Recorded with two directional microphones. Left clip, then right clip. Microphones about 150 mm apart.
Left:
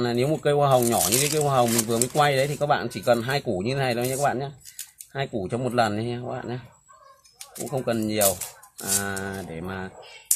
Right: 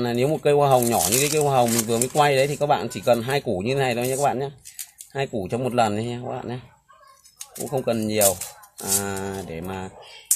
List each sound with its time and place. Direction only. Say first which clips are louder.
0.0 s speech: right 2 dB; 25° right (ahead or behind)
0.9 s speech: right 2 dB; centre (ahead or behind)
1.9 s speech: right 2 dB; 25° right (ahead or behind)
7.7 s speech: right 3 dB; 20° right (ahead or behind)
8.3 s speech: right 2 dB; centre (ahead or behind)
9.0 s speech: right 1 dB; 25° right (ahead or behind)